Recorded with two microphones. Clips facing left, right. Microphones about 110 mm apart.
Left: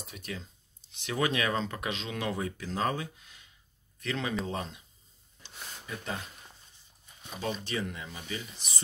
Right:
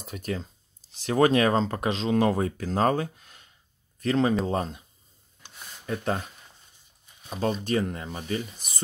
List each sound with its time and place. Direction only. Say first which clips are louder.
0.0 s speech: right 9 dB; 45° right (ahead or behind)
5.4 s a sound: even; 50° right (ahead or behind)
7.2 s speech: right 8 dB; 45° right (ahead or behind)